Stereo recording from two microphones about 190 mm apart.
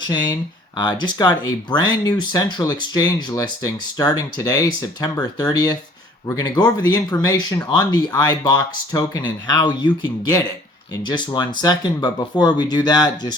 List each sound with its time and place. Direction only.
0.8 s speech: 20° left (ahead or behind)